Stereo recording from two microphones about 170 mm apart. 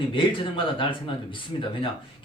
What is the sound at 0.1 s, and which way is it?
A man's voice, 30° left (ahead or behind).